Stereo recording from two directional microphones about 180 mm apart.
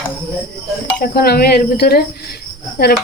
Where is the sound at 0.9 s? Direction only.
60° left (ahead or behind).